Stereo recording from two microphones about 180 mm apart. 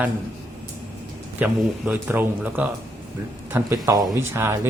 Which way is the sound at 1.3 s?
10° right (ahead or behind).